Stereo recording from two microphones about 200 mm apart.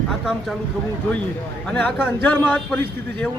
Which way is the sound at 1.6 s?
5° left (ahead or behind).